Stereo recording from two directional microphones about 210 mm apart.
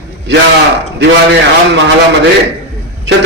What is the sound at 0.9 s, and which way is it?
Speech, 55° right (ahead or behind).